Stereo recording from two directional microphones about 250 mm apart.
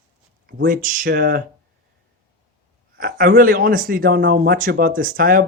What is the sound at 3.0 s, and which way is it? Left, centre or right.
Speech, right.